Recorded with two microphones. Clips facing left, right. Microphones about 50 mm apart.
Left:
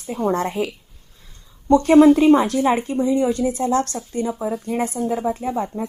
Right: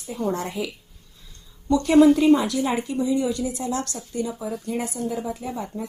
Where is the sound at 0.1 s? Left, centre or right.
Left.